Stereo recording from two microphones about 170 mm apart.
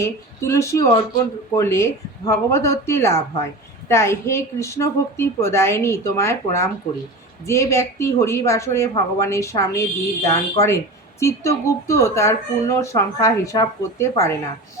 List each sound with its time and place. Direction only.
0.0 s a woman's voice: 15° left (ahead or behind)